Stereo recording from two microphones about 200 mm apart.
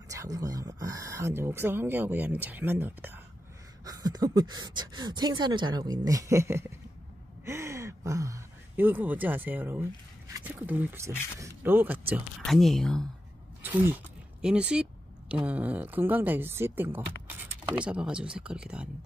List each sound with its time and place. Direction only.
0.1 s speech: 15° right (ahead or behind)
12.4 s speech: centre (ahead or behind)
13.6 s speech: 10° right (ahead or behind)